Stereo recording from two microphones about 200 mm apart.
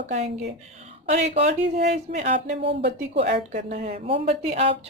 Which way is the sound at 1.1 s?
35° right (ahead or behind).